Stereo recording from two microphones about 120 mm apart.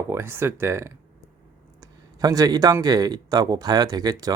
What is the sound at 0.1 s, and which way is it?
Speech, 20° right (ahead or behind).